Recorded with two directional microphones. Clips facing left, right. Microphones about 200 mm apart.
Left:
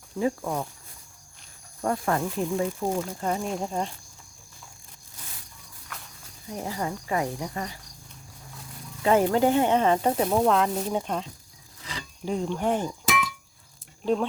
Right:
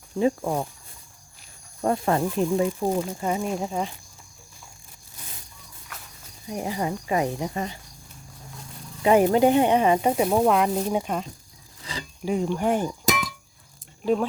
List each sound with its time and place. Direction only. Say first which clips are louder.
0.2 s speech: right 4 dB; 25° right (ahead or behind)
1.8 s speech: right 3 dB; 25° right (ahead or behind)
2.8 s speech: right 3 dB; 10° right (ahead or behind)
6.5 s speech: right 3 dB; 15° right (ahead or behind)
9.0 s speech: right 3 dB; 15° right (ahead or behind)
13.1 s music: right 1 dB; 40° right (ahead or behind)
14.0 s speech: right 2 dB; 5° right (ahead or behind)